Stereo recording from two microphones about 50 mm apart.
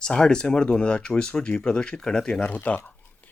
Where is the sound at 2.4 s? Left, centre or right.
Left.